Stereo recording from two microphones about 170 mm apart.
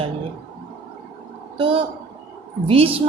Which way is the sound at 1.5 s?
30° right (ahead or behind).